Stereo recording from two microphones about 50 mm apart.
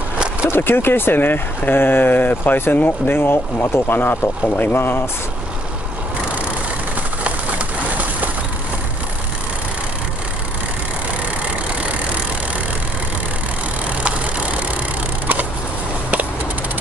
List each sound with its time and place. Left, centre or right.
0.5 s speech: left